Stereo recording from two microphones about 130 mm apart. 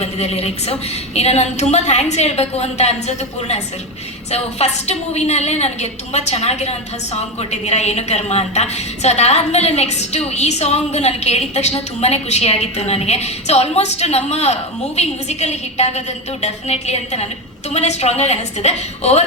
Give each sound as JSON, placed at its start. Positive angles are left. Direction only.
{"t": 0.0, "sound": "a woman's voice", "side_deg": 50}